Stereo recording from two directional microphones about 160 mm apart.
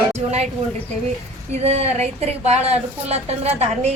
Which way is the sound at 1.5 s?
40° right (ahead or behind).